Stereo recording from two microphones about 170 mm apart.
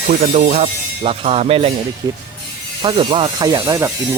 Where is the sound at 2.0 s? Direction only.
25° right (ahead or behind).